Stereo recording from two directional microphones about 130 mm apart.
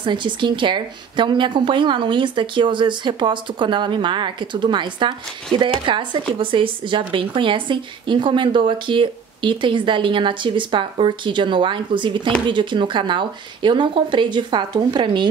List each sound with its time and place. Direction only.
0.0 s a woman's voice: 40° right (ahead or behind)